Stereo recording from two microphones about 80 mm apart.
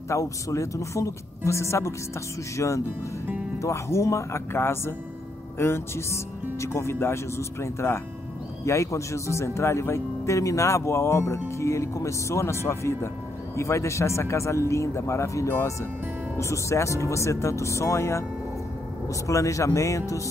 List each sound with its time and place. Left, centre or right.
0.1 s speech: left